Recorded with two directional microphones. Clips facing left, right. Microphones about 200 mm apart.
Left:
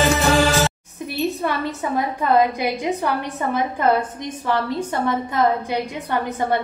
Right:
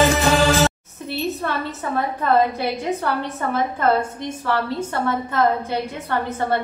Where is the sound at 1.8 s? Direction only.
15° left (ahead or behind).